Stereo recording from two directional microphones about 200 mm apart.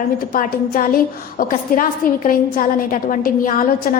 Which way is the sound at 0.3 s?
45° left (ahead or behind).